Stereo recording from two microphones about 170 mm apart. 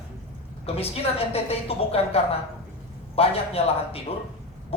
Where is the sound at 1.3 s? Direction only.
35° left (ahead or behind).